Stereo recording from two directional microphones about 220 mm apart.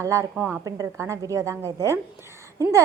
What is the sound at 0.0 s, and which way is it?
A woman's voice, 15° right (ahead or behind).